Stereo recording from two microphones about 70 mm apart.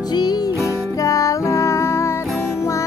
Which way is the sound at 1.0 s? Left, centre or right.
Left.